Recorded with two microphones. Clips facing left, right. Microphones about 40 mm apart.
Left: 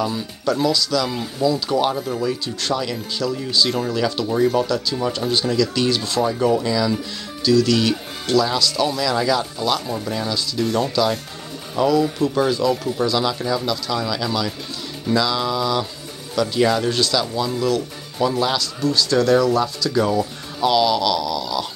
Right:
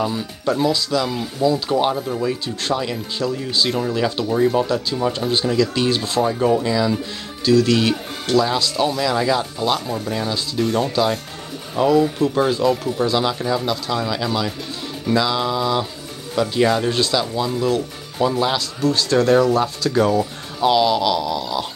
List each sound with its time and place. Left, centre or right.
0.0 s speech: centre
1.9 s speech: centre
2.2 s speech: right
3.7 s speech: centre
4.4 s speech: centre
5.2 s speech: centre
5.6 s speech: right
7.4 s speech: right; by 9.8 s centre
9.8 s speech: centre
10.1 s speech: right
12.5 s speech: right
18.8 s speech: right
20.2 s speech: centre